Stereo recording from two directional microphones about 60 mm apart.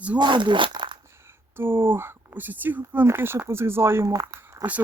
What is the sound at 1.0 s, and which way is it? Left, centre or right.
Whispering, right.